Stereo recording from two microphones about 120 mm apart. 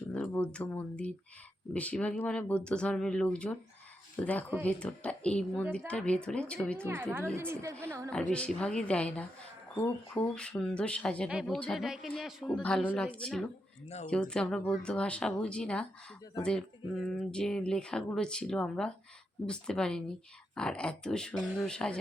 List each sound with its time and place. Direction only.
0.1 s speech: 10° left (ahead or behind)
6.8 s a woman's voice: 20° right (ahead or behind)
8.3 s speech: 10° left (ahead or behind)
11.3 s speech: 5° right (ahead or behind)
13.0 s speech: 10° left (ahead or behind)
13.8 s speech: 65° left (ahead or behind)
14.1 s speech: 10° left (ahead or behind)